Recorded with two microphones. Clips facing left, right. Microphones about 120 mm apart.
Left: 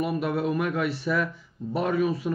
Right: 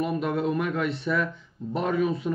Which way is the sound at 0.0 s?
5° left (ahead or behind).